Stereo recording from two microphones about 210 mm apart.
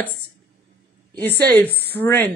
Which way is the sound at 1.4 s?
10° left (ahead or behind).